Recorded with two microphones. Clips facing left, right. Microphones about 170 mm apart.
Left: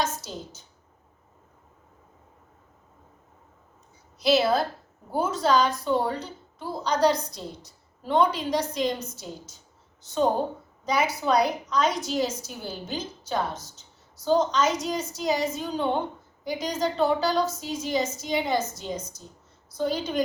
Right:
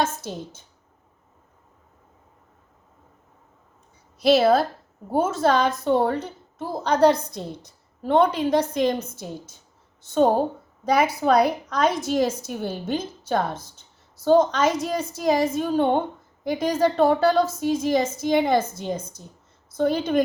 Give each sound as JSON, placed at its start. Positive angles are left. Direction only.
{"t": 4.2, "sound": "a woman's voice", "side_deg": -55}
{"t": 10.8, "sound": "a woman's voice", "side_deg": -55}